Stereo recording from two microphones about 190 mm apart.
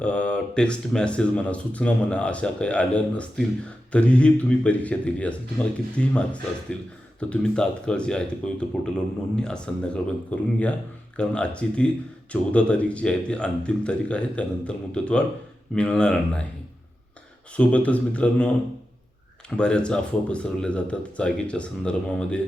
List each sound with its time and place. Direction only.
0.0 s speech: 5° left (ahead or behind)
17.5 s speech: 5° left (ahead or behind)